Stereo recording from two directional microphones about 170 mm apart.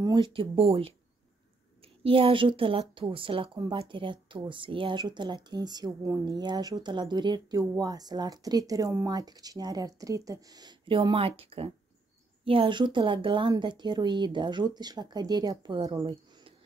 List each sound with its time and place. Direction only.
0.0 s speech: 25° right (ahead or behind)